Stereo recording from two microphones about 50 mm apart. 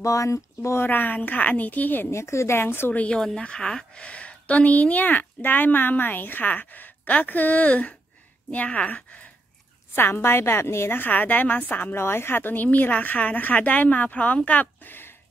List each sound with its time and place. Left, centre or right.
0.0 s speech: left
0.8 s a woman's voice: left
2.0 s a woman's voice: left
3.1 s a woman's voice: centre
9.9 s a woman's voice: left
11.9 s a woman's voice: left
12.6 s a woman's voice: left